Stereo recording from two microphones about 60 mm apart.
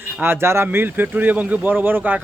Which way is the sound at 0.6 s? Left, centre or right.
Right.